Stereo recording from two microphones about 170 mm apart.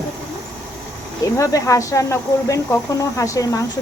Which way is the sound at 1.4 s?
20° left (ahead or behind).